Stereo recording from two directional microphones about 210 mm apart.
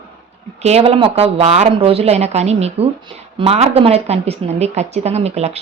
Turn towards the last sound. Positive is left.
turn(degrees=-30)  # may be behind; listen again after turning